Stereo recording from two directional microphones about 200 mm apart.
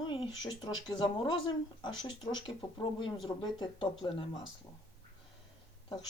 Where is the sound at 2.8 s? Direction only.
25° left (ahead or behind).